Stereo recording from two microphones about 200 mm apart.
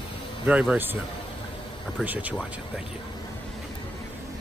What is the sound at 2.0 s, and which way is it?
Speech, 10° right (ahead or behind).